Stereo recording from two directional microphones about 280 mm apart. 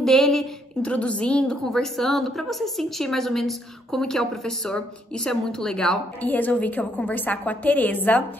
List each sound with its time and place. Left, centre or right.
0.0 s a woman's voice: centre